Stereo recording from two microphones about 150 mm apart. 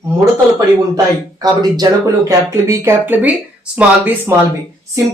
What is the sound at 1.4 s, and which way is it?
Speech, 25° right (ahead or behind).